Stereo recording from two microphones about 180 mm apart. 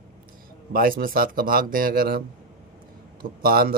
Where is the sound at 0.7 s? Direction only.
55° right (ahead or behind).